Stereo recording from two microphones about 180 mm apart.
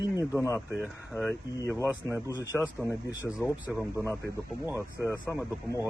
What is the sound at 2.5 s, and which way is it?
Speech, centre (ahead or behind).